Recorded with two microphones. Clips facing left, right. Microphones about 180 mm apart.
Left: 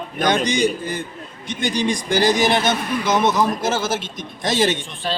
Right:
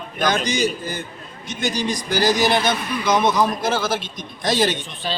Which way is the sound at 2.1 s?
10° right (ahead or behind).